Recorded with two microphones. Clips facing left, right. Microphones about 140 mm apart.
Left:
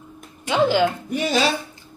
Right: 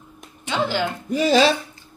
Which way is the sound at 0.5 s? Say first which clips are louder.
Left 5 dB; 15° left (ahead or behind).